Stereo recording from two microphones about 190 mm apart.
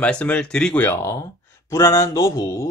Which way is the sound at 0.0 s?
5° left (ahead or behind).